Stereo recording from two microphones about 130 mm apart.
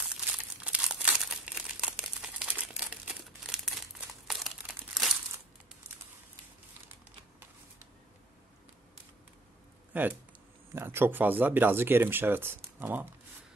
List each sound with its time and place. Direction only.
0.0 s crumpling: 10° right (ahead or behind)
9.9 s speech: 10° right (ahead or behind)